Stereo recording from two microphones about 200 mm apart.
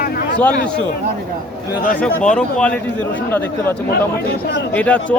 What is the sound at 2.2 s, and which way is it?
Speech, 5° left (ahead or behind).